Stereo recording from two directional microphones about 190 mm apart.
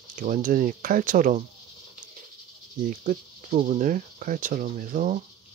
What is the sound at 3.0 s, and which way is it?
Speech, 45° right (ahead or behind).